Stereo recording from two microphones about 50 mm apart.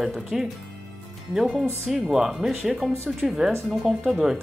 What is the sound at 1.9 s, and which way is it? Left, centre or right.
Speech, centre.